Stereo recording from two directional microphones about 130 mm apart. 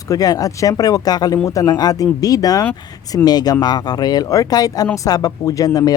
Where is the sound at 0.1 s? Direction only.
30° left (ahead or behind).